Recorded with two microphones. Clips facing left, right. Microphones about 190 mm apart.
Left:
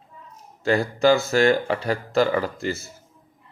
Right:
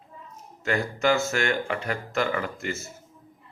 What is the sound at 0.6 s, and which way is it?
Speech, 35° left (ahead or behind).